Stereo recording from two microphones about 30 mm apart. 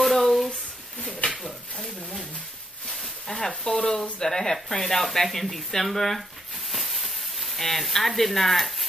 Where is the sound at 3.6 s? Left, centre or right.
Left.